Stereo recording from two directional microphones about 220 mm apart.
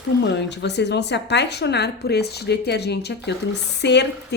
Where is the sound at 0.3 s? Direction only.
50° left (ahead or behind).